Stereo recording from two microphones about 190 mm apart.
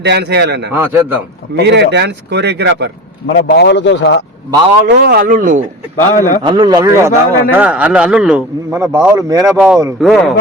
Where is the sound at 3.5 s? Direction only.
65° left (ahead or behind).